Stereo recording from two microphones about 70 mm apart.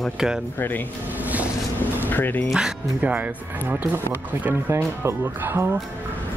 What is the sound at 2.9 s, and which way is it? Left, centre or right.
Speech, right.